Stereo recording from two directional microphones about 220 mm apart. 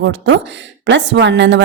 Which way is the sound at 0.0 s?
55° right (ahead or behind).